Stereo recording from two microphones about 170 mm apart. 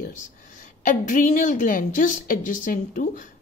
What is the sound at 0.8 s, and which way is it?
A woman's voice, 50° left (ahead or behind).